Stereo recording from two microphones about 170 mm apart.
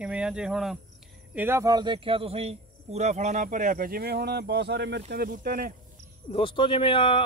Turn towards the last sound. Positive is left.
turn(degrees=30)  # may be behind; listen again after turning